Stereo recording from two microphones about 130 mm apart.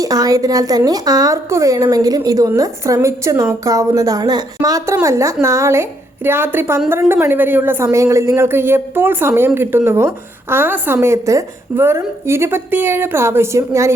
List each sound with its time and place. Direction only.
0.0 s a woman's voice: 25° right (ahead or behind)